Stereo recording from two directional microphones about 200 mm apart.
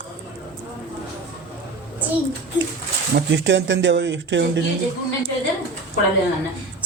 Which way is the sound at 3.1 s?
60° right (ahead or behind).